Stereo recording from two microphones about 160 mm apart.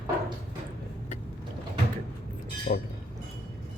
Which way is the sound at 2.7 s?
60° left (ahead or behind).